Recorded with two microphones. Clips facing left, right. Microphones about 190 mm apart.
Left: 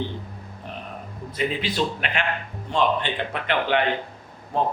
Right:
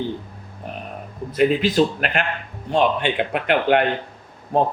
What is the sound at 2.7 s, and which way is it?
A man's voice, 55° right (ahead or behind).